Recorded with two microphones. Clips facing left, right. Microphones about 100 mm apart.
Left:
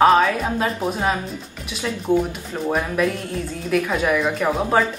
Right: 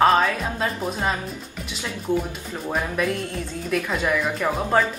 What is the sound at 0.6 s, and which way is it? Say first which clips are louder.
Speech: left 1 dB; 5° left (ahead or behind).